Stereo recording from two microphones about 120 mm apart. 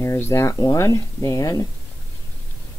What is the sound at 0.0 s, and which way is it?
Speech, 25° left (ahead or behind).